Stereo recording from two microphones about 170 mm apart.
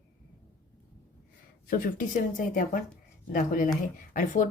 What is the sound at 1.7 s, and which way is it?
A woman's voice, 55° left (ahead or behind).